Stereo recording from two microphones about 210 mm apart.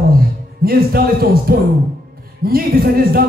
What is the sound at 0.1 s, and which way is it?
A man's voice, 45° right (ahead or behind).